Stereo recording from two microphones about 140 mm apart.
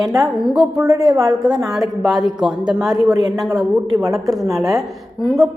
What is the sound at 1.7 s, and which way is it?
A woman's voice, centre (ahead or behind).